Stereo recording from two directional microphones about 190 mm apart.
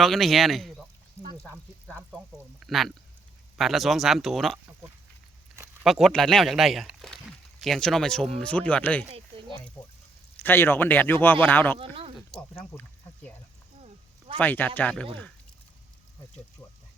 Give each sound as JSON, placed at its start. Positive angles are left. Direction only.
{"t": 0.0, "sound": "speech", "side_deg": 0}
{"t": 2.0, "sound": "speech", "side_deg": 0}
{"t": 5.8, "sound": "speech", "side_deg": 0}
{"t": 9.3, "sound": "a sound", "side_deg": -30}
{"t": 9.8, "sound": "speech", "side_deg": 25}
{"t": 10.3, "sound": "speech", "side_deg": 10}
{"t": 14.3, "sound": "speech", "side_deg": 10}